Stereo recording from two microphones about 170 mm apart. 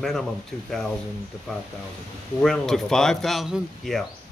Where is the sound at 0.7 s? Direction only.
5° left (ahead or behind).